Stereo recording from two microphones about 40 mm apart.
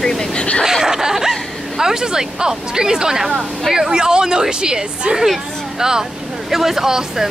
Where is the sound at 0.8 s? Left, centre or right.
Centre.